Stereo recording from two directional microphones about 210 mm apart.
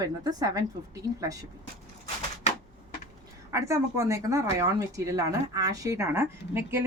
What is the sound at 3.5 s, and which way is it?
Speech, 15° right (ahead or behind).